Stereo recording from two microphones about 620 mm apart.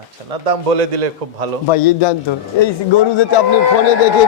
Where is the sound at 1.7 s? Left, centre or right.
Left.